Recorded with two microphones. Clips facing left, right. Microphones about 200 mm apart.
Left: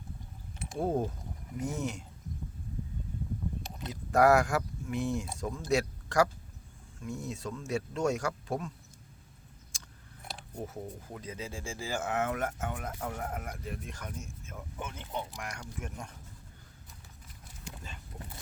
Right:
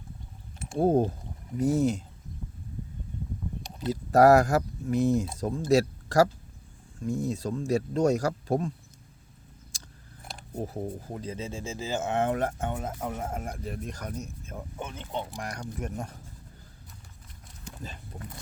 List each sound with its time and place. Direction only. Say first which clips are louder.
0.8 s speech: right 8 dB; 40° right (ahead or behind)
4.1 s speech: right 5 dB; 35° right (ahead or behind)
9.7 s a sound: right 3 dB; 35° right (ahead or behind)
10.5 s speech: right 7 dB; 30° right (ahead or behind)
15.4 s speech: right 6 dB; 35° right (ahead or behind)